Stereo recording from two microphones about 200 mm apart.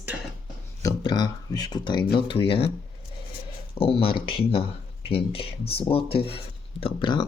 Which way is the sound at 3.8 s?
25° left (ahead or behind).